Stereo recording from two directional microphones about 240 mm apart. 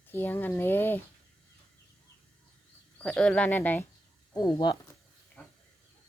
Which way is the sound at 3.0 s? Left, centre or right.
Centre.